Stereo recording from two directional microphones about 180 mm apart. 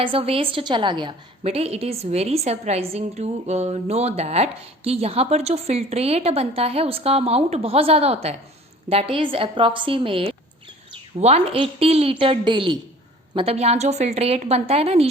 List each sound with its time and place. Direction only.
0.0 s a woman's voice: 30° right (ahead or behind)